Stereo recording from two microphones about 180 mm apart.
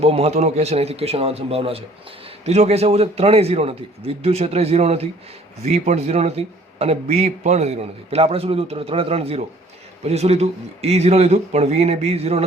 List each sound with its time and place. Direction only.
0.0 s a man's voice: 35° right (ahead or behind)